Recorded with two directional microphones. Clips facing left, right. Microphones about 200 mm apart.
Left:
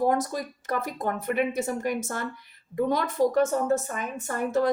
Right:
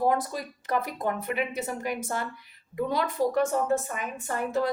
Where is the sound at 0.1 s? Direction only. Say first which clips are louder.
Left 2 dB; 45° left (ahead or behind).